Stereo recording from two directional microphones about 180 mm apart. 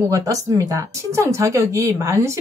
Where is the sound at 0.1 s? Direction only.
20° right (ahead or behind).